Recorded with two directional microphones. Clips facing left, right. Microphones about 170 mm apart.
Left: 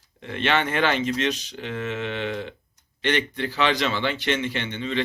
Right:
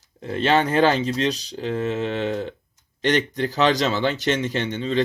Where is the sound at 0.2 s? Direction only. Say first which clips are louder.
Right 4 dB; 35° right (ahead or behind).